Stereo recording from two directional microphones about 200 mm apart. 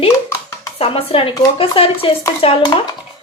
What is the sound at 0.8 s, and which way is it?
Speech, 30° left (ahead or behind).